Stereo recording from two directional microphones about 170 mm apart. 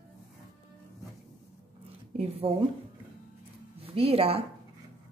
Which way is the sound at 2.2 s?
35° right (ahead or behind).